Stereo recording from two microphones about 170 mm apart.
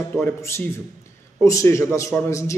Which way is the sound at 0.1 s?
15° left (ahead or behind).